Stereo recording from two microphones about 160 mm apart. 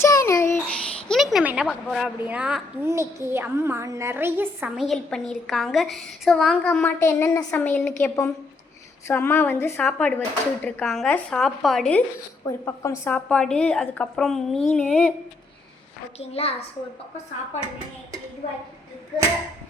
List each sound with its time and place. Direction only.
0.0 s a sound: 20° left (ahead or behind)
1.0 s a sound: centre (ahead or behind)
1.6 s a woman's voice: centre (ahead or behind)
4.8 s a woman's voice: centre (ahead or behind)
12.5 s speech: 15° left (ahead or behind)
16.1 s a child's voice: 40° left (ahead or behind)